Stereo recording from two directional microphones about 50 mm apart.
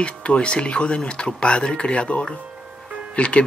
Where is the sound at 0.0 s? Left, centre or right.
Left.